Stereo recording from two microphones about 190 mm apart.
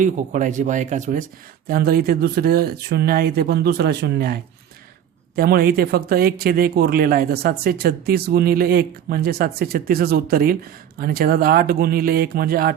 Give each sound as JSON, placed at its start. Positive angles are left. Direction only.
{"t": 0.0, "sound": "speech", "side_deg": -40}
{"t": 1.6, "sound": "speech", "side_deg": -50}
{"t": 5.4, "sound": "speech", "side_deg": -55}